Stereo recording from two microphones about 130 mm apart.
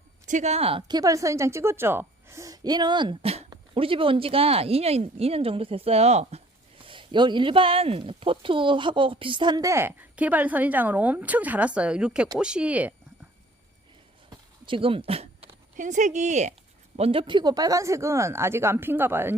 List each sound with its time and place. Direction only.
0.3 s a woman's voice: 65° right (ahead or behind)
0.8 s a woman's voice: 30° right (ahead or behind); by 12.9 s 10° right (ahead or behind)
14.3 s a sound: 40° right (ahead or behind)
15.8 s speech: 70° right (ahead or behind)
17.0 s a woman's voice: 45° right (ahead or behind); by 19.4 s 15° right (ahead or behind)